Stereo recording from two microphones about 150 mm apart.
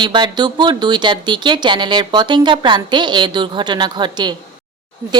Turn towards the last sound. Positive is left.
turn(degrees=-30)  # may be behind; listen again after turning